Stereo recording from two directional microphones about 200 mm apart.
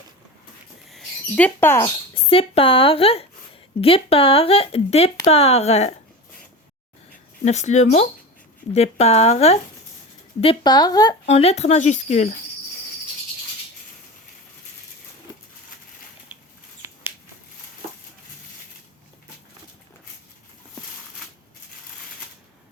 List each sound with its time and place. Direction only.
0.9 s a sound: 5° left (ahead or behind)
2.3 s speech: 30° left (ahead or behind)
7.4 s speech: 35° left (ahead or behind); by 11.2 s 20° left (ahead or behind)
11.3 s speech: 30° left (ahead or behind)